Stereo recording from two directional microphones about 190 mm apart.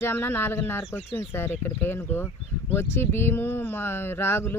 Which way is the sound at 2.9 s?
10° left (ahead or behind).